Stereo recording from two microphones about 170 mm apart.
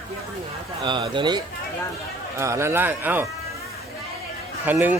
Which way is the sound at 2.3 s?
15° right (ahead or behind).